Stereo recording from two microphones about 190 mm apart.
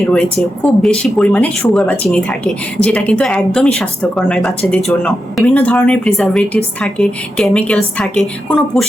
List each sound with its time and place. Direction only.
0.0 s speech: 5° left (ahead or behind)